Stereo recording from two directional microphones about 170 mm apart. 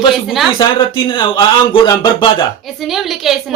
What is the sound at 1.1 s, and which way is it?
Speech, 25° left (ahead or behind).